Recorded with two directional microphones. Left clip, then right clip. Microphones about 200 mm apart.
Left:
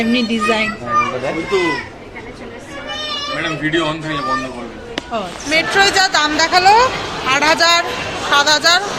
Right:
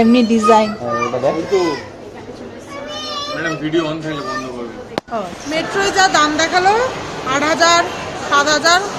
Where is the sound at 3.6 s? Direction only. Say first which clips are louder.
Left 2 dB; 40° left (ahead or behind).